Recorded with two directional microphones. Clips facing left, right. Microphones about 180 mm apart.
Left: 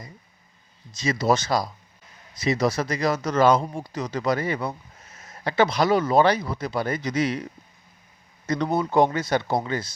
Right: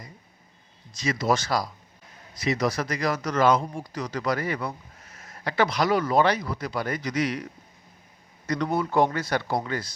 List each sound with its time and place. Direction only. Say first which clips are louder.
0.9 s speech: left 2 dB; 25° left (ahead or behind)
8.4 s speech: left 2 dB; 25° left (ahead or behind)